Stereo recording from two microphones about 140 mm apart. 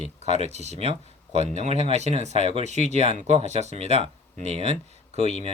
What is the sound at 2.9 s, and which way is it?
Speech, 50° right (ahead or behind).